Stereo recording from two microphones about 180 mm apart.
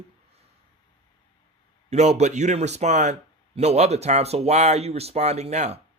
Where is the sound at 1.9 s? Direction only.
40° right (ahead or behind).